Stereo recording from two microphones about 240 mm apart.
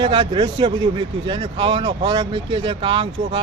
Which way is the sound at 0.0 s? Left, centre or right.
Right.